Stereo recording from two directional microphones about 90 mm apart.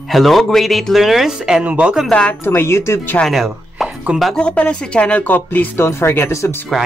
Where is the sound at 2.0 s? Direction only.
10° left (ahead or behind).